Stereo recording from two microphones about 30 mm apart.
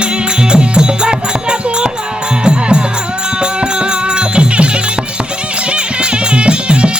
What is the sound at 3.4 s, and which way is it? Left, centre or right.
Music, right.